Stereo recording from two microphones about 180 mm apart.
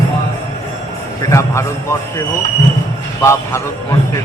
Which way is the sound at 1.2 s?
15° left (ahead or behind).